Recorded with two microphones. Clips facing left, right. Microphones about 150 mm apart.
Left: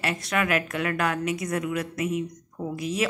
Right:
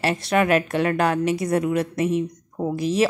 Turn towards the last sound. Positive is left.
turn(degrees=-30)  # may be behind; listen again after turning